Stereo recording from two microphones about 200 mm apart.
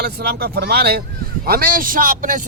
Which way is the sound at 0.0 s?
55° right (ahead or behind).